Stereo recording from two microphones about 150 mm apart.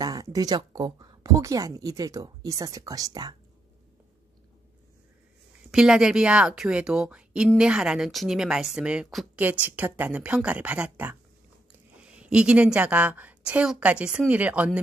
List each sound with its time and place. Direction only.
0.0 s speech: 25° right (ahead or behind)
5.7 s a woman's voice: 5° right (ahead or behind)
12.2 s a woman's voice: 5° right (ahead or behind)